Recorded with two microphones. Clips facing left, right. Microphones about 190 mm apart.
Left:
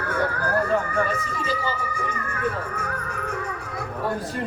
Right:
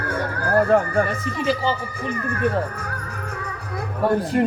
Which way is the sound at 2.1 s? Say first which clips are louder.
Right 9 dB; 35° right (ahead or behind).